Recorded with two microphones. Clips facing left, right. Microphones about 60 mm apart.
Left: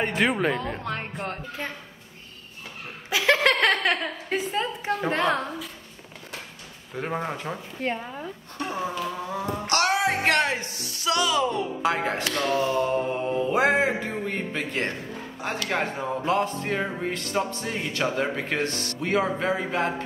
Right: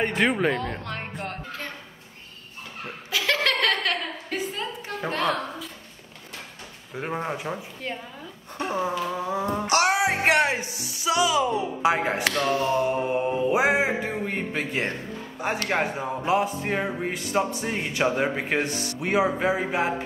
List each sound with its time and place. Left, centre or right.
0.0 s speech: centre
3.1 s chuckle: left
5.1 s a woman's voice: left
7.0 s speech: centre
7.8 s speech: left
8.5 s a man's voice: centre